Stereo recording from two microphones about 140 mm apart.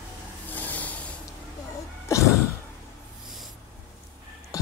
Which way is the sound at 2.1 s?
20° left (ahead or behind).